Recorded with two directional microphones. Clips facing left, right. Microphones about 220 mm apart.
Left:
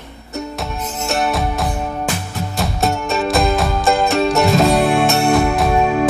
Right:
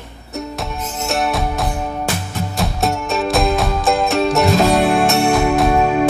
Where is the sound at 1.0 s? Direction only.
Centre (ahead or behind).